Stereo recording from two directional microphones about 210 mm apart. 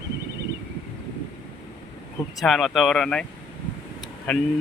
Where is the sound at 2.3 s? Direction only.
Centre (ahead or behind).